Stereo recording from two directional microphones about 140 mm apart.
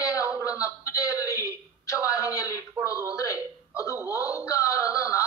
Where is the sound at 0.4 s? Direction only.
25° left (ahead or behind).